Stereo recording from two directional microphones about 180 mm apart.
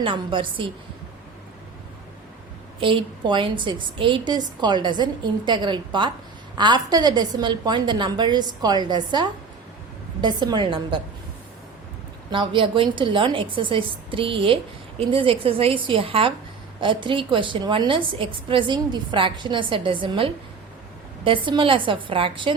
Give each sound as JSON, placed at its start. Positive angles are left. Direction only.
{"t": 0.0, "sound": "a woman's voice", "side_deg": -25}
{"t": 2.8, "sound": "a woman's voice", "side_deg": -25}
{"t": 12.3, "sound": "a woman's voice", "side_deg": -25}